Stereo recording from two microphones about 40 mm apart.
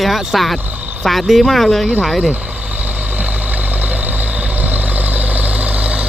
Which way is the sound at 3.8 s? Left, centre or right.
Right.